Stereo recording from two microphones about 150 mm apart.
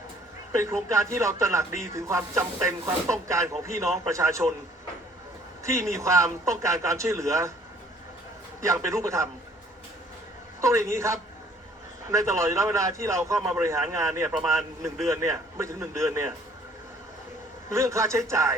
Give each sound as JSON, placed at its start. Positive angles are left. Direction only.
{"t": 0.5, "sound": "a man's voice", "side_deg": -20}
{"t": 5.6, "sound": "a man's voice", "side_deg": -20}
{"t": 8.6, "sound": "a man's voice", "side_deg": -20}
{"t": 10.6, "sound": "a man's voice", "side_deg": -20}
{"t": 17.7, "sound": "a man's voice", "side_deg": -20}